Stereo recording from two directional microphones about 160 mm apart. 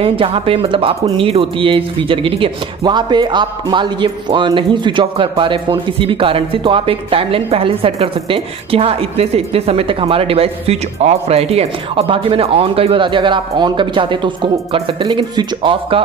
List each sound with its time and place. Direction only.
0.0 s a woman's voice: 35° right (ahead or behind)